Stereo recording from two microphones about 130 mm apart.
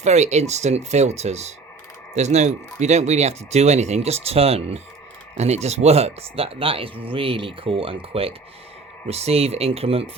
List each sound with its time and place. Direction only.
0.0 s speech: 60° right (ahead or behind)